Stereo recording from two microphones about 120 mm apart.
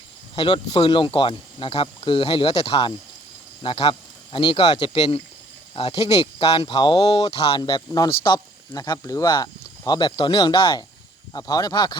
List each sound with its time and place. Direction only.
0.3 s speech: 40° left (ahead or behind)
4.8 s speech: 40° left (ahead or behind)
5.7 s speech: 55° left (ahead or behind)
6.7 s speech: 35° left (ahead or behind)
7.3 s speech: 55° left (ahead or behind)
7.6 s speech: 35° left (ahead or behind)